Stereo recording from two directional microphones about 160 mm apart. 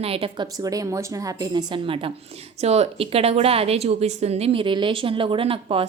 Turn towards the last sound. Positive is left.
turn(degrees=-35)  # may be behind; listen again after turning